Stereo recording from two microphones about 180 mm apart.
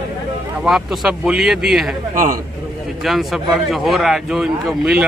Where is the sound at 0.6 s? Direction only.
Centre (ahead or behind).